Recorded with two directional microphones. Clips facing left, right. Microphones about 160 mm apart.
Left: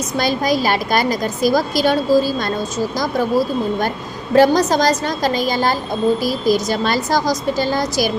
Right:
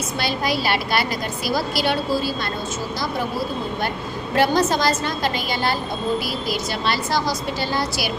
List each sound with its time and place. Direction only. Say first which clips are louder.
0.2 s a woman's voice: left 6 dB; 45° left (ahead or behind)